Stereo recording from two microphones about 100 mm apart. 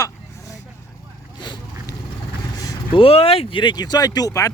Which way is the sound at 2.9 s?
70° left (ahead or behind).